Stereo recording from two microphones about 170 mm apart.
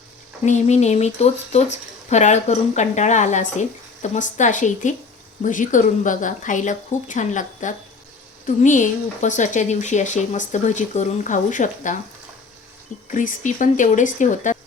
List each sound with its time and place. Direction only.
0.4 s speech: 45° left (ahead or behind)
13.1 s speech: 50° left (ahead or behind)